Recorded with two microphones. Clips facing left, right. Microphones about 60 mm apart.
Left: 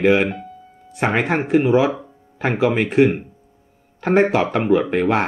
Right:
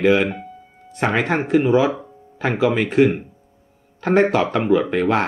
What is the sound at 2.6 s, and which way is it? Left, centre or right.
Speech, left.